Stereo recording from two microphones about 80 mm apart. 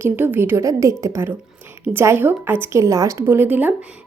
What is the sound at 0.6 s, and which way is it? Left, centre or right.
Speech, right.